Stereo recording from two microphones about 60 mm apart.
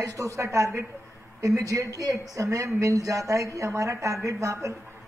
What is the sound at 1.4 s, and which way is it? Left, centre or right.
Speech, right.